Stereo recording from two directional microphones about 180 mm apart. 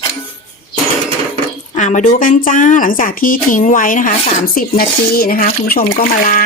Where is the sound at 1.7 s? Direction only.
45° left (ahead or behind).